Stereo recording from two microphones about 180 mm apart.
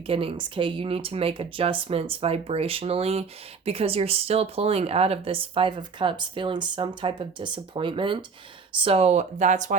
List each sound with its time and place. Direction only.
0.1 s speech: 30° right (ahead or behind)